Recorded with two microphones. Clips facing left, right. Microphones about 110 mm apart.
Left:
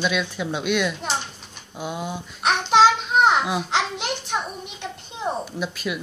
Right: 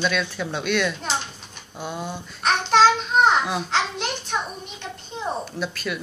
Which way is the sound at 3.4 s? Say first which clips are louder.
Left 1 dB; 10° left (ahead or behind).